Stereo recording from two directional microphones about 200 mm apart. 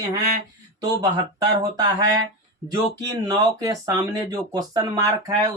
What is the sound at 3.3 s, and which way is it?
Speech, 20° right (ahead or behind).